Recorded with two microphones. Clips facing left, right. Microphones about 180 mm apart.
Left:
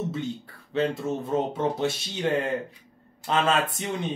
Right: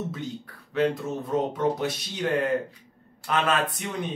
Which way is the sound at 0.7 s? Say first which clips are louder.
Right 1 dB; 25° left (ahead or behind).